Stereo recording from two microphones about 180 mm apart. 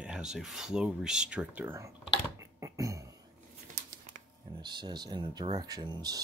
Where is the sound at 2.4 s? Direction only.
15° right (ahead or behind).